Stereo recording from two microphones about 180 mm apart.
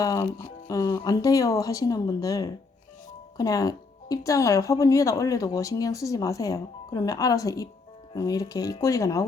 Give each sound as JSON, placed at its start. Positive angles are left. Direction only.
{"t": 0.0, "sound": "speech", "side_deg": 20}